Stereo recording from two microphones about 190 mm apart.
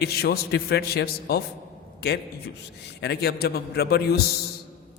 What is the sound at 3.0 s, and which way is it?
A man's voice, 60° left (ahead or behind).